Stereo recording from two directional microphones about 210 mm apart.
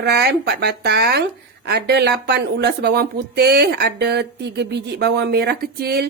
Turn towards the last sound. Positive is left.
turn(degrees=-50)  # may be behind; listen again after turning